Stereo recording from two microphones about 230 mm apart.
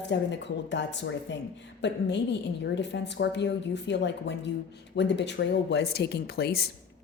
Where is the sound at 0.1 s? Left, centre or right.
Left.